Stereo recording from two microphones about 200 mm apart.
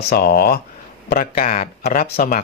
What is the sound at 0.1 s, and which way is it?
Speech, 50° left (ahead or behind).